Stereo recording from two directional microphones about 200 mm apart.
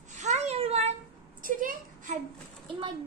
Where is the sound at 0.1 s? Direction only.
35° right (ahead or behind).